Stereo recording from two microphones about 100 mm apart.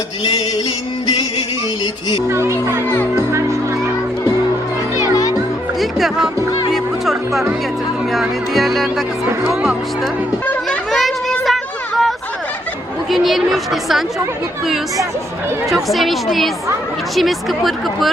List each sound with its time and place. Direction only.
2.1 s speech: 30° right (ahead or behind)
4.9 s music: 35° left (ahead or behind)
5.8 s speech: centre (ahead or behind)
7.0 s music: centre (ahead or behind)
8.1 s speech: centre (ahead or behind)
10.4 s children playing: 15° left (ahead or behind)
10.9 s a sound: centre (ahead or behind)
13.1 s speech: centre (ahead or behind)
15.7 s speech: centre (ahead or behind)